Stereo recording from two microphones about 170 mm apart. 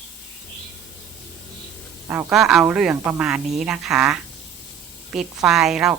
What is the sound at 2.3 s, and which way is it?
Speech, 5° right (ahead or behind).